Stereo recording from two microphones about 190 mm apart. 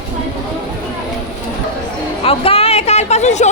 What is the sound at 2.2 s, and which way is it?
Chatter, 30° left (ahead or behind).